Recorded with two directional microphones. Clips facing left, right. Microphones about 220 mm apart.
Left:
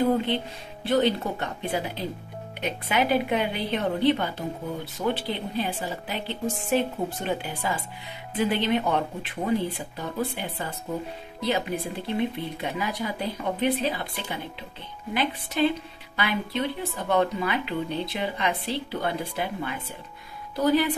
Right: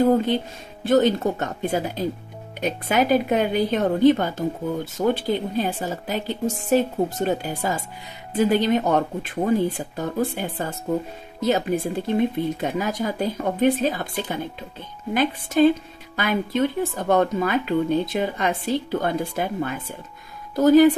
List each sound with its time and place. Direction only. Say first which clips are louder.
0.8 s speech: right 5 dB; 45° right (ahead or behind)